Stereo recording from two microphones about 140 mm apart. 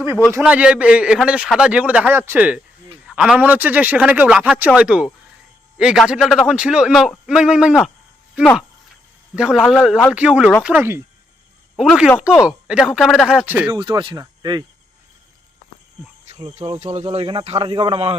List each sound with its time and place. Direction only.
0.1 s speech: 10° left (ahead or behind)
0.3 s a man's voice: 10° right (ahead or behind)
9.3 s a man's voice: 5° right (ahead or behind)
9.6 s speech: 10° left (ahead or behind)
10.1 s a man's voice: 5° right (ahead or behind)
11.8 s a man's voice: centre (ahead or behind)
13.7 s speech: 35° right (ahead or behind)
16.3 s speech: 50° right (ahead or behind)